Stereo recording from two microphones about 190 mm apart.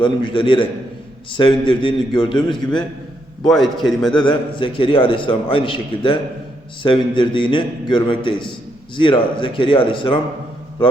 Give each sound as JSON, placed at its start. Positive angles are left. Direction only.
{"t": 0.0, "sound": "a man's voice", "side_deg": 25}
{"t": 3.5, "sound": "a man's voice", "side_deg": 0}
{"t": 4.2, "sound": "a man's voice", "side_deg": 25}